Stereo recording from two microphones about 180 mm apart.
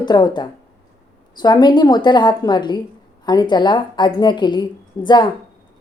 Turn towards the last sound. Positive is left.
turn(degrees=25)  # may be behind; listen again after turning